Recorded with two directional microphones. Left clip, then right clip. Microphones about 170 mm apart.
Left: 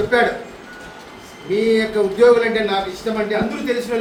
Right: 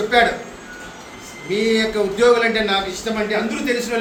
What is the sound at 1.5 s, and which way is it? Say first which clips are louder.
A man's voice: left 1 dB; 15° left (ahead or behind).